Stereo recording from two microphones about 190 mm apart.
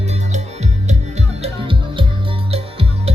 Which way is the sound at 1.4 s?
25° right (ahead or behind).